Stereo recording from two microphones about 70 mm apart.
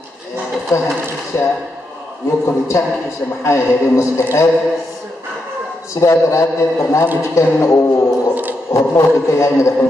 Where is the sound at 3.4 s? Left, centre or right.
Left.